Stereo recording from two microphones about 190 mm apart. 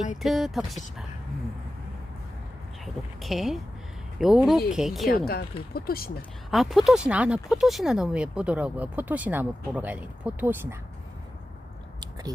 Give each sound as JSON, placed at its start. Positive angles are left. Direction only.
{"t": 0.2, "sound": "speech", "side_deg": 0}
{"t": 2.8, "sound": "speech", "side_deg": 0}
{"t": 5.0, "sound": "speech", "side_deg": 55}
{"t": 6.5, "sound": "speech", "side_deg": 0}